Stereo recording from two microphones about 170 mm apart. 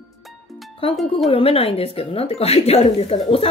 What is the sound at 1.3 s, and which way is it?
Speech, 35° left (ahead or behind).